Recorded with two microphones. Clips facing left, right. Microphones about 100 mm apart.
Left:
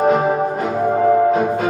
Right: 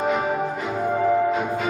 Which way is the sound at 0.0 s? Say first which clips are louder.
Left 7 dB; 40° left (ahead or behind).